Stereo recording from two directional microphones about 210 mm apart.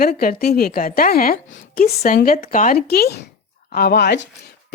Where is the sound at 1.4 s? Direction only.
60° left (ahead or behind).